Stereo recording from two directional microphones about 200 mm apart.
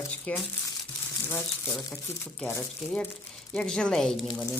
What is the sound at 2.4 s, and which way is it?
Speech, 10° left (ahead or behind).